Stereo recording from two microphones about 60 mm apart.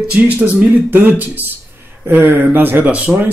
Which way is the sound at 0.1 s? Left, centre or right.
Right.